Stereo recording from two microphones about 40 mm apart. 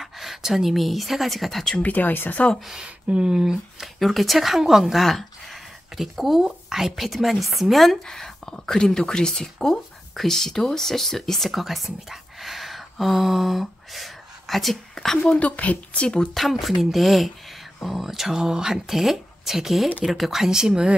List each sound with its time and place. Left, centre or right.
0.0 s speech: centre
1.8 s speech: left
2.7 s speech: right
3.8 s speech: centre
15.3 s speech: left
16.3 s speech: centre